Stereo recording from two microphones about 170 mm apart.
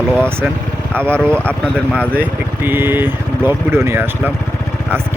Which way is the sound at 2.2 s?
10° right (ahead or behind).